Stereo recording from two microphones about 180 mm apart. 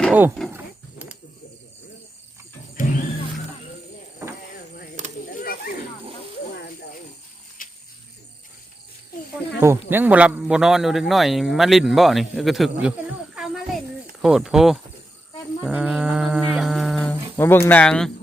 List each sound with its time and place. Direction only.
0.1 s speech: 10° right (ahead or behind)
0.5 s wild animals: 10° right (ahead or behind)
2.8 s music: 45° left (ahead or behind)
5.3 s a sound: 55° left (ahead or behind)
7.6 s wild animals: 50° left (ahead or behind)
9.9 s a man's voice: 10° right (ahead or behind)
13.3 s a sound: 5° right (ahead or behind)
14.2 s a man's voice: centre (ahead or behind)
15.6 s livestock: 5° right (ahead or behind)